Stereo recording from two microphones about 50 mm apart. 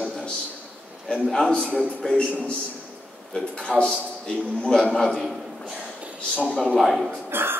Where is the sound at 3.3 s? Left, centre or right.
Left.